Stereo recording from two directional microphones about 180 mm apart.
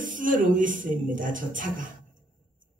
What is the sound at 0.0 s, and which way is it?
A woman's voice, 45° right (ahead or behind).